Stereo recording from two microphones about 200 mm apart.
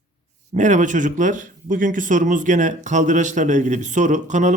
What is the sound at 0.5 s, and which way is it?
Speech, 40° right (ahead or behind).